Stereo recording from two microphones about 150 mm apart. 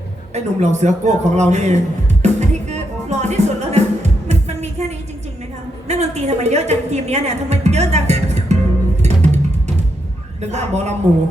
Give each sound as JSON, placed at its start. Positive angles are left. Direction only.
{"t": 0.3, "sound": "a woman's voice", "side_deg": -50}
{"t": 2.2, "sound": "music", "side_deg": -50}
{"t": 5.9, "sound": "a woman's voice", "side_deg": -45}
{"t": 9.0, "sound": "music", "side_deg": -50}
{"t": 10.4, "sound": "a woman's voice", "side_deg": -50}